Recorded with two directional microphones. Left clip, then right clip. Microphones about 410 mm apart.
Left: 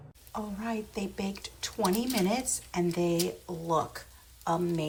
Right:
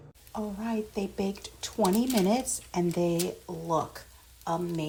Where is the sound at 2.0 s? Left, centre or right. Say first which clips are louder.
Right 3 dB; centre.